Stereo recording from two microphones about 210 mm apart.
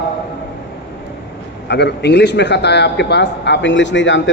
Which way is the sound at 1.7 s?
55° left (ahead or behind).